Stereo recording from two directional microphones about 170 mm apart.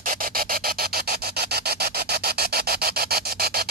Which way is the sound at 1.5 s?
65° right (ahead or behind).